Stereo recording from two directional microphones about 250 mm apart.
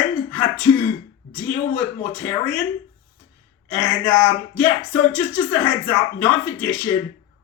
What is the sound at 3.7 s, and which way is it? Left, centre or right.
A man's voice, centre.